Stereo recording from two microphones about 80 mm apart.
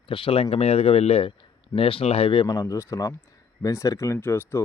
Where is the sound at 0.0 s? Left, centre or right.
Left.